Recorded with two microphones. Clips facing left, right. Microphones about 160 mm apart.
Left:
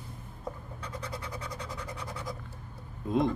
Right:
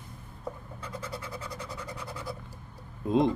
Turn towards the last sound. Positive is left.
turn(degrees=-20)  # may be behind; listen again after turning